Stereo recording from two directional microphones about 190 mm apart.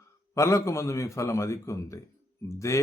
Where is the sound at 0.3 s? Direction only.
15° left (ahead or behind).